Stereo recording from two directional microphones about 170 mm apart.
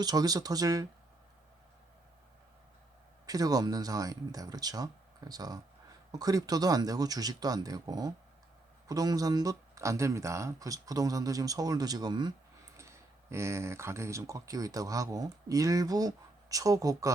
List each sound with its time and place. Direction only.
0.0 s speech: 20° right (ahead or behind)
3.2 s speech: 20° right (ahead or behind)